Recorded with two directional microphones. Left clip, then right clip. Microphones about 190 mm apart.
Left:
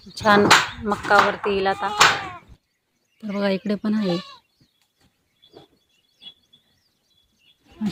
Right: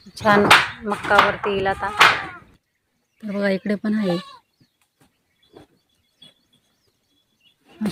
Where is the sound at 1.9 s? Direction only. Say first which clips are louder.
Right 3 dB; 40° right (ahead or behind).